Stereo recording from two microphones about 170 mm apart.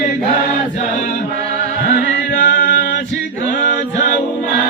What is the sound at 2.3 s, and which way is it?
Chant, 80° left.